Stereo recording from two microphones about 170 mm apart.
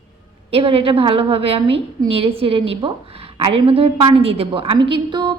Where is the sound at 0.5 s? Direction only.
35° right (ahead or behind).